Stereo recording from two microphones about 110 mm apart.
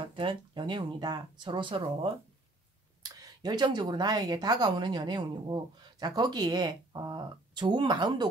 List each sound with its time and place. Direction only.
0.0 s speech: 50° right (ahead or behind)
3.0 s speech: 35° right (ahead or behind)